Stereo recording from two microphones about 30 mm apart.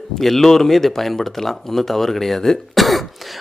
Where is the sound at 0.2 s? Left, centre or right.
Centre.